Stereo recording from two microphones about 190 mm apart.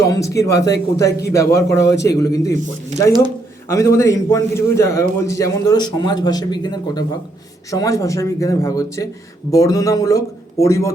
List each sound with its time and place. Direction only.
0.0 s a man's voice: 15° left (ahead or behind)
3.7 s a man's voice: 15° left (ahead or behind)